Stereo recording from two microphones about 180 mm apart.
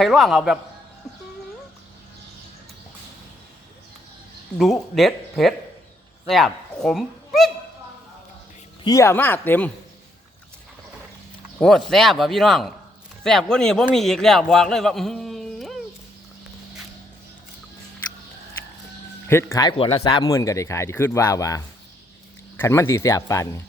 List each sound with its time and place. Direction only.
0.0 s a man's voice: centre (ahead or behind)
4.5 s a man's voice: centre (ahead or behind)
8.8 s speech: 20° left (ahead or behind)
11.6 s a man's voice: centre (ahead or behind)
19.3 s speech: 15° left (ahead or behind)
19.6 s speech: 30° left (ahead or behind)